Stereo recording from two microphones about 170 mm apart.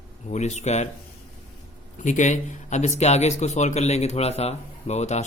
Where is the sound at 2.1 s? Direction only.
45° left (ahead or behind).